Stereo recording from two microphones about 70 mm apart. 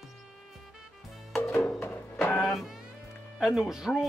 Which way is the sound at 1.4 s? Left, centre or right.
Left.